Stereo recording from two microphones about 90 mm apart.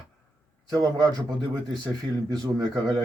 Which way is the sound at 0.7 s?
45° right (ahead or behind).